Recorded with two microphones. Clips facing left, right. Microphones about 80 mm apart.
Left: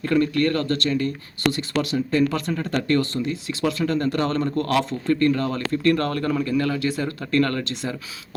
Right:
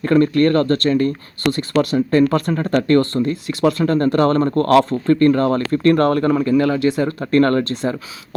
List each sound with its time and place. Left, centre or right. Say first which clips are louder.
0.0 s speech: right 6 dB; right